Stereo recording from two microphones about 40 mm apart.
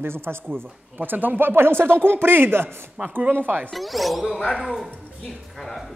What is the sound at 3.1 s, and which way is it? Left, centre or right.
Speech, right.